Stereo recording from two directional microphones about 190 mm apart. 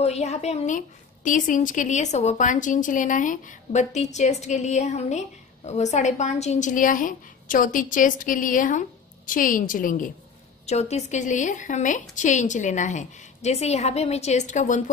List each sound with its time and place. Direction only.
0.0 s a woman's voice: 35° left (ahead or behind)
10.7 s a woman's voice: 35° left (ahead or behind)